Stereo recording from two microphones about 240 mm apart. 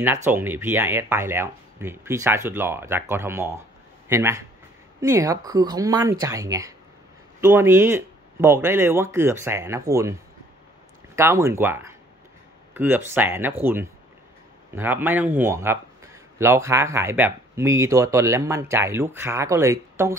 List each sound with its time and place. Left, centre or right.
0.0 s a man's voice: centre
11.1 s a man's voice: centre